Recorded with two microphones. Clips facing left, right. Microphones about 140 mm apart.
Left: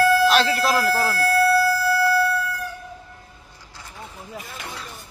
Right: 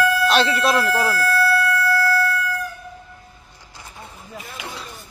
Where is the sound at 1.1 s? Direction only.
30° left (ahead or behind).